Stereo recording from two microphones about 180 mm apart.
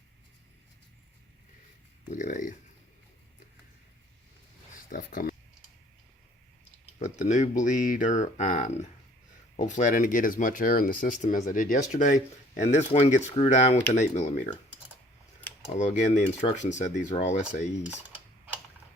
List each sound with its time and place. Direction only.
2.0 s a sound: 45° left (ahead or behind)
4.9 s speech: 50° left (ahead or behind)
7.0 s speech: 40° left (ahead or behind)
15.7 s speech: 40° left (ahead or behind)